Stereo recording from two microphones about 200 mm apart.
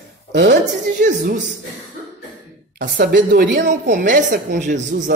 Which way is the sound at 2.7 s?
45° right (ahead or behind).